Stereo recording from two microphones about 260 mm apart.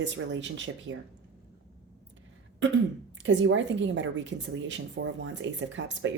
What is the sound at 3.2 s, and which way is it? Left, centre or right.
Speech, right.